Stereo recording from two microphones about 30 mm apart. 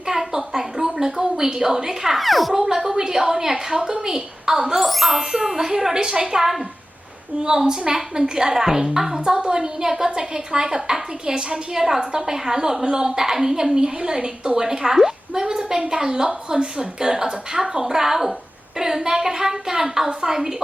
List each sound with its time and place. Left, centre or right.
0.1 s a sound: centre
1.2 s a woman's voice: centre
2.1 s a child's voice: centre
2.5 s a woman's voice: centre
4.8 s a child's voice: centre
5.5 s a woman's voice: centre